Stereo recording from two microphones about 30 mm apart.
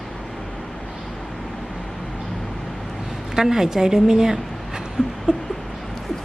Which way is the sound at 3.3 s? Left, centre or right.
Centre.